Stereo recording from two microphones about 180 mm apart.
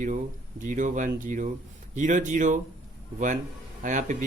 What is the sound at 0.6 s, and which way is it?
Speech, 45° right (ahead or behind).